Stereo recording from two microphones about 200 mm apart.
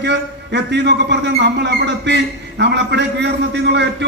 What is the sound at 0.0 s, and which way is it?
A man's voice, 60° right (ahead or behind).